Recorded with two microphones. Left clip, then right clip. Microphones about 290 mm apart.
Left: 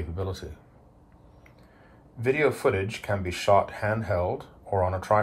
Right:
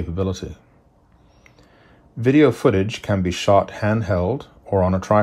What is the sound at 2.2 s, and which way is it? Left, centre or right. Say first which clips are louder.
Speech: right 8 dB; right.